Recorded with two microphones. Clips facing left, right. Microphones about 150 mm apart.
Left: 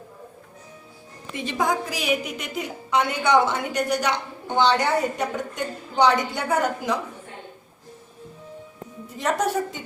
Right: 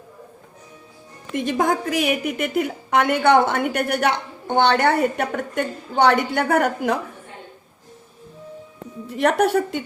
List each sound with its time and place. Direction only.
1.3 s a woman's voice: 50° right (ahead or behind)
9.0 s a woman's voice: 65° right (ahead or behind)